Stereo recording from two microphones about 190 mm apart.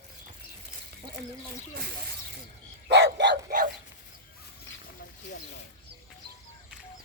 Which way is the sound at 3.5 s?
45° right (ahead or behind).